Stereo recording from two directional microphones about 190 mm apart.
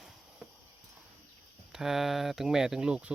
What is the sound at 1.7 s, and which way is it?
Speech, centre (ahead or behind).